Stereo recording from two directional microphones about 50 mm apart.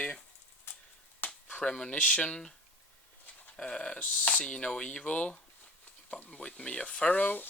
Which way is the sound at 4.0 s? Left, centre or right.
Left.